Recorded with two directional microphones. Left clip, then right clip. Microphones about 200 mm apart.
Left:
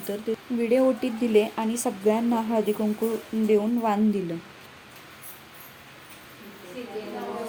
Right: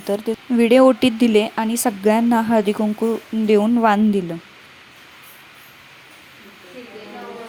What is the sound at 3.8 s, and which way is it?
Speech, 50° right (ahead or behind).